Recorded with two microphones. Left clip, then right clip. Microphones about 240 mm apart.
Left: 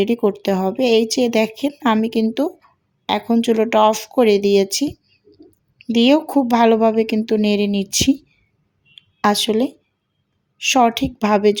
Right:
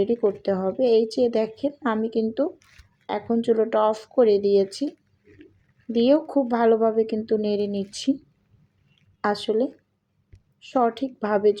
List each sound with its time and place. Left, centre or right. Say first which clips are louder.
0.0 s speech: left 4 dB; left
9.2 s speech: left 6 dB; left